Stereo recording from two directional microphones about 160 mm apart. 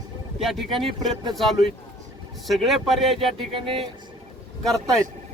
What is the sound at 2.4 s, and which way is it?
Speech, centre (ahead or behind).